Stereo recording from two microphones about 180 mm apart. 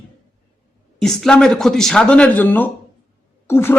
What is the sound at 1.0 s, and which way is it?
A man's voice, 5° left (ahead or behind).